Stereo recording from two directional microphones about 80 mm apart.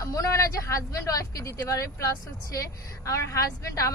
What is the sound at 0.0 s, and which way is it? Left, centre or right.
A woman's voice, left.